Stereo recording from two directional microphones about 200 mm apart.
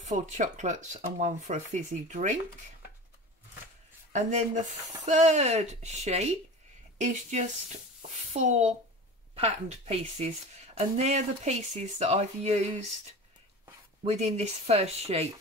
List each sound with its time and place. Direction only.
0.0 s a woman's voice: 35° right (ahead or behind)
4.1 s a woman's voice: 35° right (ahead or behind)
14.0 s a woman's voice: 35° right (ahead or behind)